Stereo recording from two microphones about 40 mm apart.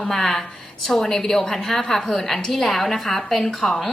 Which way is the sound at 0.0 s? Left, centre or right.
Centre.